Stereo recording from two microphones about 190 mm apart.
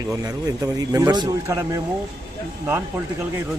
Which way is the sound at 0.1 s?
20° right (ahead or behind).